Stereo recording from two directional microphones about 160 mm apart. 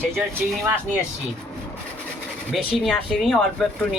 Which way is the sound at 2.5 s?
Centre (ahead or behind).